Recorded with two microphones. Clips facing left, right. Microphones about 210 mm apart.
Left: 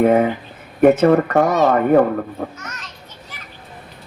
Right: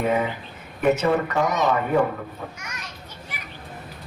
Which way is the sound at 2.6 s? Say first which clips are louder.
Left 3 dB; 10° right (ahead or behind).